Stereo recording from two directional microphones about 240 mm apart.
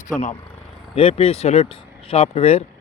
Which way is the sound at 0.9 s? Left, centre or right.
Left.